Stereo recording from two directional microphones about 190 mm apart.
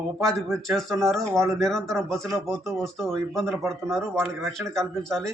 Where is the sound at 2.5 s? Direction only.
15° right (ahead or behind).